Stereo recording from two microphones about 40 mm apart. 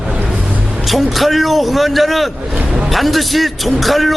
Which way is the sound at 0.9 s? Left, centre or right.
Centre.